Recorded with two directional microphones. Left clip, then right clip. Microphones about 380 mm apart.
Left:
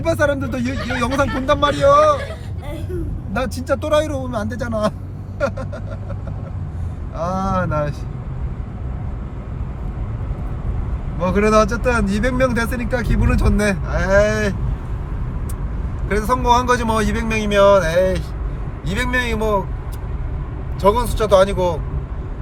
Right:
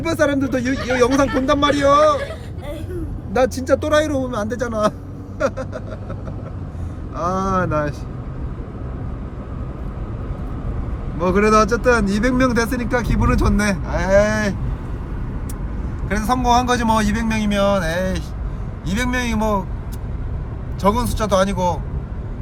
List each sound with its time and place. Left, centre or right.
0.4 s speech: centre
3.7 s speech: left
4.3 s speech: centre
7.2 s speech: centre
11.2 s speech: centre
16.0 s speech: centre
20.8 s speech: centre